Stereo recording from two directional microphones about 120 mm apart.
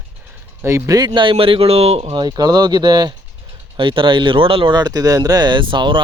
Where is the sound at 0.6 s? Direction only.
25° right (ahead or behind); by 2.1 s 55° right (ahead or behind).